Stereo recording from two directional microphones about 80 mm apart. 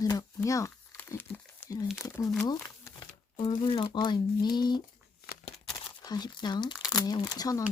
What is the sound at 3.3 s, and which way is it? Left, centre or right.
Speech, left.